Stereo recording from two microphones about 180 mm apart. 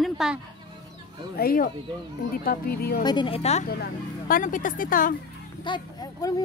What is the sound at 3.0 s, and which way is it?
Speech, 25° left (ahead or behind).